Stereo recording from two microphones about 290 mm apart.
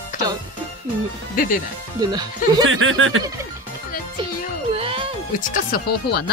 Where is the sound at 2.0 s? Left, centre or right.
Centre.